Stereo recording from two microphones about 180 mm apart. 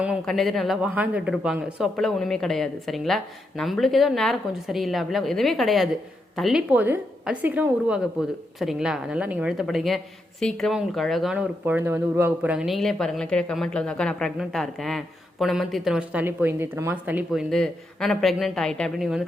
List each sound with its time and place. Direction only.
0.0 s a woman's voice: centre (ahead or behind)
17.5 s speech: 5° left (ahead or behind)